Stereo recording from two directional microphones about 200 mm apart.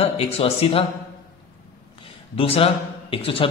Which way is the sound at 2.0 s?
30° left (ahead or behind).